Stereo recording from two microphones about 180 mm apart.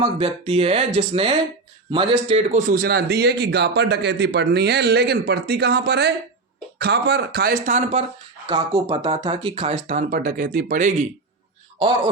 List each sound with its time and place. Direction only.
0.0 s a man's voice: 30° right (ahead or behind)
8.4 s speech: 30° right (ahead or behind); by 10.9 s 45° right (ahead or behind)